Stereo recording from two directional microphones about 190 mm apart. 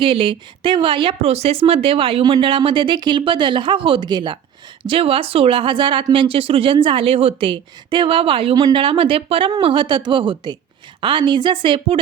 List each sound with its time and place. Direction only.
0.0 s speech: 30° right (ahead or behind)